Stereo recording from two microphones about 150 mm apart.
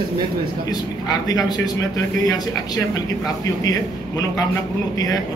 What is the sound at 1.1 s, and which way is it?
Speech, 25° left (ahead or behind).